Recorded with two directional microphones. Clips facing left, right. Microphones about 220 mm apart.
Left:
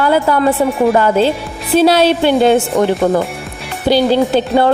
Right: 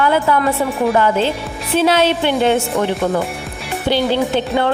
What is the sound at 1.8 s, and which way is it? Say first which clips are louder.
Speech: left 4 dB; 35° left (ahead or behind).